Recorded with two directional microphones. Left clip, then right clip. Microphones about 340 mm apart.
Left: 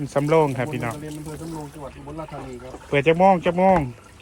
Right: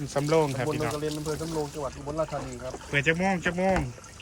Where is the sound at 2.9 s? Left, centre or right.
Centre.